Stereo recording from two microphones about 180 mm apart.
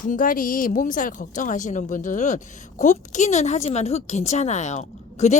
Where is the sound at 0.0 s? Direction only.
50° left (ahead or behind).